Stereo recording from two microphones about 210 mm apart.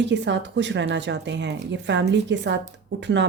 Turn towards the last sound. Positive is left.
turn(degrees=-55)  # may be behind; listen again after turning